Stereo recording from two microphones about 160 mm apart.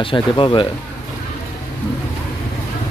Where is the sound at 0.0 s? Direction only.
30° left (ahead or behind).